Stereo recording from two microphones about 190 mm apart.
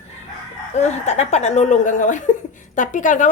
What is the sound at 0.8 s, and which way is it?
A woman's voice, 35° left (ahead or behind).